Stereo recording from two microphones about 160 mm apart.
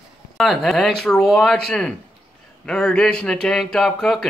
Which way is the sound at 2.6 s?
5° left (ahead or behind).